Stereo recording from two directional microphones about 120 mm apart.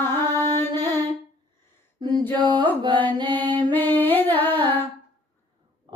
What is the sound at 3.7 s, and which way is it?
Humming, 15° left (ahead or behind).